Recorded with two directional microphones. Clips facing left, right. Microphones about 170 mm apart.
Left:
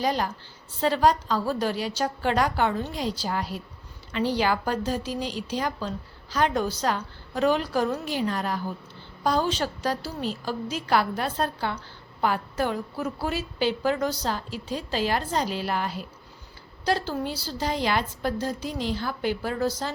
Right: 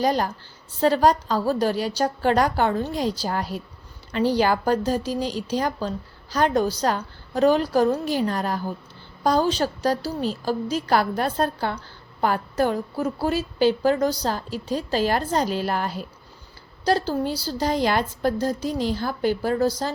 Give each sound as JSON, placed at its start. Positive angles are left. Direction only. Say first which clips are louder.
{"t": 0.0, "sound": "a woman's voice", "louder": "right 4 dB", "side_deg": -45}